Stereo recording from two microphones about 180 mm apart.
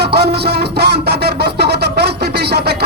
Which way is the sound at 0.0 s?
60° right (ahead or behind).